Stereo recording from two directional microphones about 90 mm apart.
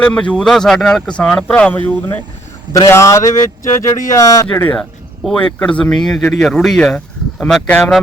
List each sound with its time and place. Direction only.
0.0 s speech: 10° left (ahead or behind)
2.7 s speech: 35° left (ahead or behind)
4.7 s speech: 5° left (ahead or behind)